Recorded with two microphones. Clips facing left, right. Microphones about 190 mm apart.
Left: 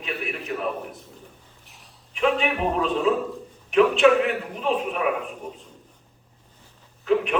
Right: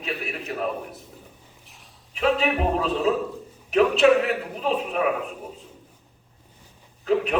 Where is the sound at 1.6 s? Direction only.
Centre (ahead or behind).